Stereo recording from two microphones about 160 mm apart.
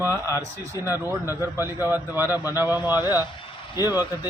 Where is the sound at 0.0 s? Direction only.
15° right (ahead or behind).